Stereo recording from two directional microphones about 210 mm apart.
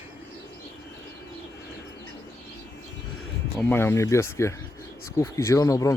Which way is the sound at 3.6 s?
10° left (ahead or behind).